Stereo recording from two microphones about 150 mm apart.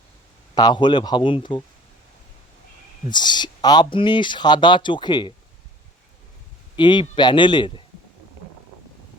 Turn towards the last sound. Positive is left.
turn(degrees=35)  # may be behind; listen again after turning